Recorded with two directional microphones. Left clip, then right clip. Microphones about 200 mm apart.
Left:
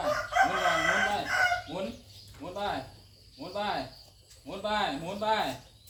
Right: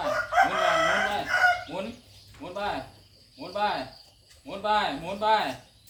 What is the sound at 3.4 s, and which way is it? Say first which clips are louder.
Cricket: right 6 dB; 30° right (ahead or behind).